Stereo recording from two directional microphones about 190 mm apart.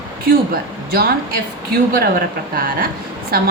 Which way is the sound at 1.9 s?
50° right (ahead or behind).